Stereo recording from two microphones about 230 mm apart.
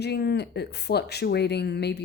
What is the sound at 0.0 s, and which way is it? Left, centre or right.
A woman's voice, left.